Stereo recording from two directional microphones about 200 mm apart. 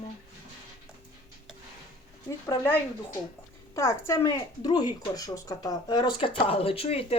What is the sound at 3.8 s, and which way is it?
Speech, 15° left (ahead or behind).